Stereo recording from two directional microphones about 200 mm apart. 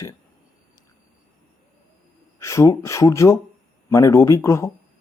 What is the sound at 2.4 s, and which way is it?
Speech, 15° left (ahead or behind).